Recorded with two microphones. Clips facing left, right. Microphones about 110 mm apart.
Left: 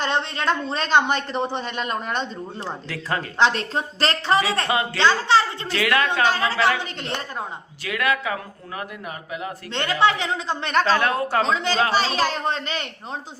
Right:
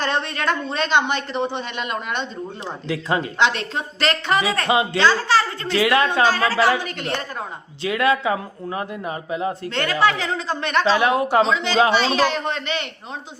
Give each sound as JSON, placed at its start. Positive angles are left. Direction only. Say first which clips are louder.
{"t": 0.0, "sound": "a sound", "louder": "right 1 dB", "side_deg": 25}
{"t": 0.7, "sound": "speech", "louder": "left 1 dB", "side_deg": 40}
{"t": 2.9, "sound": "speech", "louder": "right 6 dB", "side_deg": -15}
{"t": 3.3, "sound": "speech", "louder": "even", "side_deg": 40}
{"t": 5.6, "sound": "a man's voice", "louder": "right 4 dB", "side_deg": -20}
{"t": 6.2, "sound": "speech", "louder": "right 2 dB", "side_deg": 20}
{"t": 7.9, "sound": "a man's voice", "louder": "right 4 dB", "side_deg": -25}
{"t": 9.7, "sound": "speech", "louder": "left 1 dB", "side_deg": 20}
{"t": 10.8, "sound": "speech", "louder": "right 3 dB", "side_deg": -15}
{"t": 11.4, "sound": "speech", "louder": "right 3 dB", "side_deg": 40}